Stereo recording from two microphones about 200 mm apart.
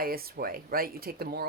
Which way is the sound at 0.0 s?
45° right (ahead or behind).